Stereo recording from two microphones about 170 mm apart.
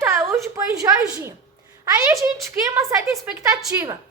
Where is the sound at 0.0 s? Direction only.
15° right (ahead or behind).